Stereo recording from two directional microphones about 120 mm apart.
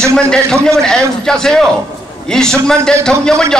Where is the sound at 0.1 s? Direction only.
5° left (ahead or behind).